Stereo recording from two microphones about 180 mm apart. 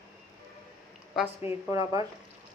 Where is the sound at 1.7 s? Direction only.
20° right (ahead or behind).